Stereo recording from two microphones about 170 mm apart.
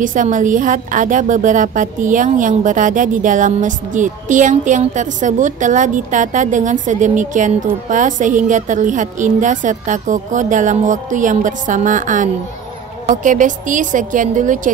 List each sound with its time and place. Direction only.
0.0 s a woman's voice: 50° right (ahead or behind)